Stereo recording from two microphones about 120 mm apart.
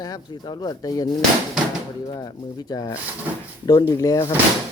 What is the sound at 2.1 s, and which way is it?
Speech, 30° left (ahead or behind).